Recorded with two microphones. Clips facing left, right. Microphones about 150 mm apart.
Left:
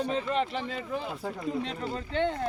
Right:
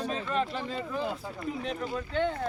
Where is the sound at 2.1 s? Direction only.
25° left (ahead or behind).